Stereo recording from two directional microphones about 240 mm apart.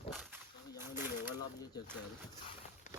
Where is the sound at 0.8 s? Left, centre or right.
Centre.